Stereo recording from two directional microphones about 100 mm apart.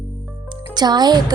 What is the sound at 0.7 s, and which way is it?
Speech, 45° right (ahead or behind).